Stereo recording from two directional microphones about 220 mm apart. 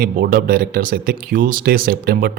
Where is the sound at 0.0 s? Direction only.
40° right (ahead or behind).